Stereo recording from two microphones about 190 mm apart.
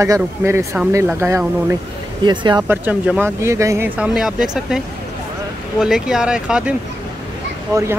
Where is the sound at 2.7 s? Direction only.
10° right (ahead or behind).